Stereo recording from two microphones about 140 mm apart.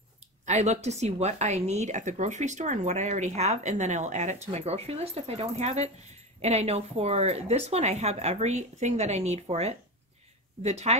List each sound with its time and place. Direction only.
0.5 s speech: 55° right (ahead or behind)